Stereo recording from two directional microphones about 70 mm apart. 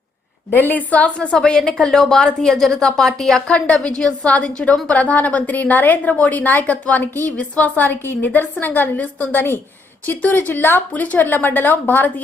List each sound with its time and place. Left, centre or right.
0.5 s a woman's voice: left